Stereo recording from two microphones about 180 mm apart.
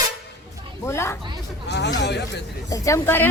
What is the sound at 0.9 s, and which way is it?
Speech, 15° left (ahead or behind).